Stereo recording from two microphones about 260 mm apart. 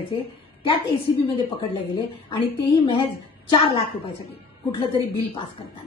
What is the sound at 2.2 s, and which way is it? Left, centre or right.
A woman's voice, centre.